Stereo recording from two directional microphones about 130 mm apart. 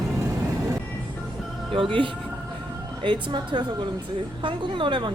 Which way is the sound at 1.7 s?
40° right (ahead or behind).